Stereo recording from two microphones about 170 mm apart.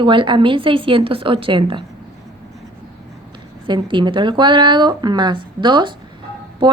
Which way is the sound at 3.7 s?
30° right (ahead or behind).